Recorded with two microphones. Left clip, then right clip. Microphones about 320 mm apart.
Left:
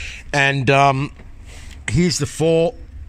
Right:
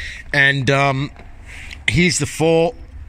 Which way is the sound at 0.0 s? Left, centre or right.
Centre.